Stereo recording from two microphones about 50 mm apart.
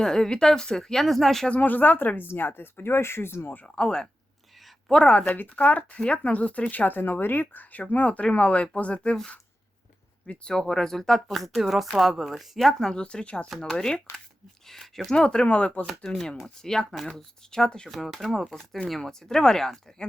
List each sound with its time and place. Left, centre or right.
0.0 s speech: centre
1.5 s speech: left
3.8 s speech: centre
5.3 s speech: left
10.4 s speech: centre
13.0 s speech: centre
15.1 s speech: centre
16.6 s speech: centre
17.8 s speech: centre